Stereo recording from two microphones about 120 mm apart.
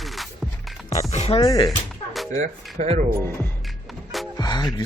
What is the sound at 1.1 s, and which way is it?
Speech, 60° left (ahead or behind).